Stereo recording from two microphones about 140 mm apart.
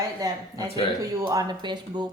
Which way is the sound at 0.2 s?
25° right (ahead or behind).